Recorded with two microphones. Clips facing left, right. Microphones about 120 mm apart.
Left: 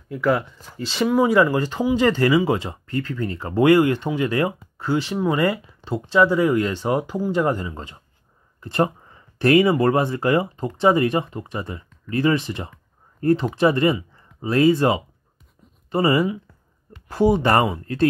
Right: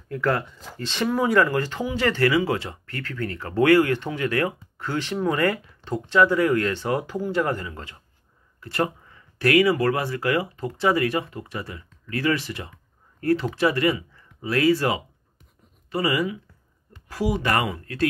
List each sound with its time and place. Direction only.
0.1 s speech: 5° left (ahead or behind); by 18.0 s 25° left (ahead or behind)